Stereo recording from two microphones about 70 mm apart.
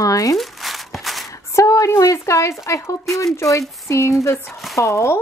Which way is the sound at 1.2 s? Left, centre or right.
Left.